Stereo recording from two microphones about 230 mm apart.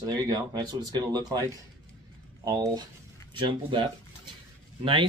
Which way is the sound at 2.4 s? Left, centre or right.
Centre.